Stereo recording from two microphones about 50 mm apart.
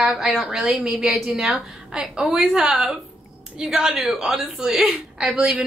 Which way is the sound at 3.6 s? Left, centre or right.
Centre.